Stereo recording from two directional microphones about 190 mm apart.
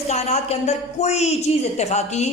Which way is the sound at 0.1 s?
35° left (ahead or behind).